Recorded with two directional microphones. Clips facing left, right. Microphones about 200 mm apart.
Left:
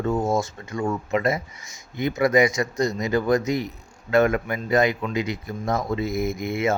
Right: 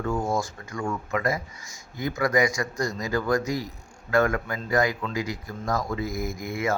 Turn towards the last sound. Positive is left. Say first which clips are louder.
# left 4 dB
turn(degrees=25)  # may be behind; listen again after turning